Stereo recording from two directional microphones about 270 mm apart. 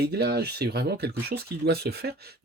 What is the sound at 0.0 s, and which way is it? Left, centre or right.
Speech, right.